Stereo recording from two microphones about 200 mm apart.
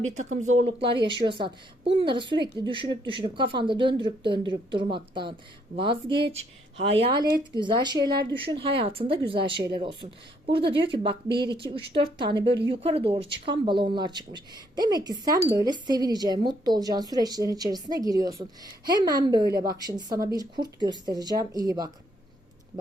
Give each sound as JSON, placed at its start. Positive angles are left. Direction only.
{"t": 0.1, "sound": "speech", "side_deg": -35}